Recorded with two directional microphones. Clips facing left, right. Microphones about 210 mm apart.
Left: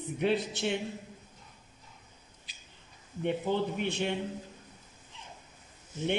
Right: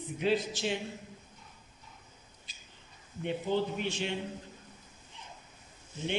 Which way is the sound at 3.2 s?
60° left (ahead or behind).